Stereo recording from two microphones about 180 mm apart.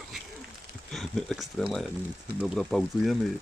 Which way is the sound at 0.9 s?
Centre (ahead or behind).